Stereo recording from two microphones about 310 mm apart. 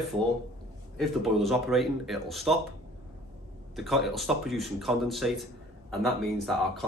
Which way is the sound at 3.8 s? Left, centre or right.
Centre.